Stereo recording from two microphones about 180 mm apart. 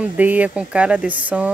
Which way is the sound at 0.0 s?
10° right (ahead or behind).